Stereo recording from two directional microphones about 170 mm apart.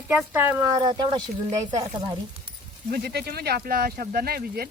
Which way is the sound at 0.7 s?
25° right (ahead or behind).